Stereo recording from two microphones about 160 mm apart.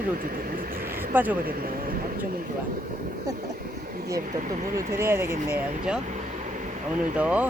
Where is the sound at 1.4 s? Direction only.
65° right (ahead or behind).